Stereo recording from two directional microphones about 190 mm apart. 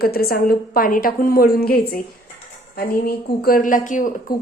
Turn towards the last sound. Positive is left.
turn(degrees=45)  # may be behind; listen again after turning